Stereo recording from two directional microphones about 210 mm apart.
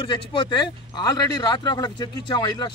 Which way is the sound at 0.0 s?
25° left (ahead or behind).